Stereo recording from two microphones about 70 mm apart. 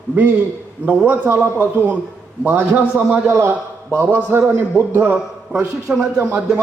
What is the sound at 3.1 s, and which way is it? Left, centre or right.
A man's voice, right.